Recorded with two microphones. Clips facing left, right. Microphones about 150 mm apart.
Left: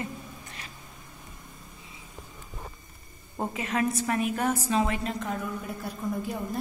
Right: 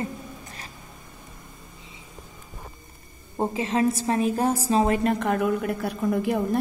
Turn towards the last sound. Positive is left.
turn(degrees=-70)  # may be behind; listen again after turning